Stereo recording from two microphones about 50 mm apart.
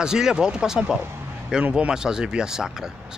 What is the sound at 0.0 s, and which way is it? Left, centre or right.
Speech, centre.